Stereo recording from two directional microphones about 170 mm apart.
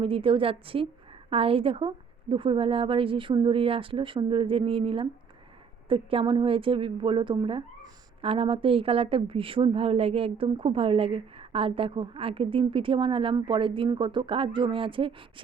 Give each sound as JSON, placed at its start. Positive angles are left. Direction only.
{"t": 0.0, "sound": "a woman's voice", "side_deg": -30}